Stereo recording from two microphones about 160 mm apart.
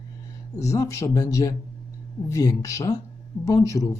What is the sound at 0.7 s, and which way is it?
Speech, 20° left (ahead or behind).